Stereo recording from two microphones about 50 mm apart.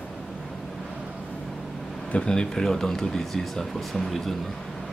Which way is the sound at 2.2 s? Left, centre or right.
Centre.